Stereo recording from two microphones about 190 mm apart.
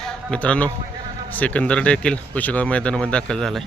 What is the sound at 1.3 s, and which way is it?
Speech, 5° left (ahead or behind).